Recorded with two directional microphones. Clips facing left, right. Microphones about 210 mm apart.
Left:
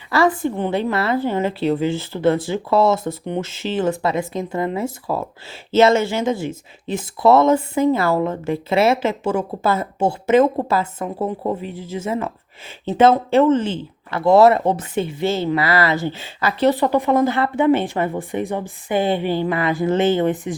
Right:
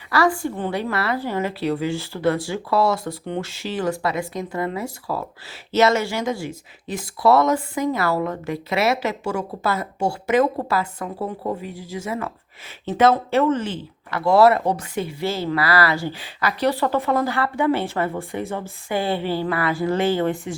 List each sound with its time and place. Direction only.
0.1 s a woman's voice: 25° left (ahead or behind)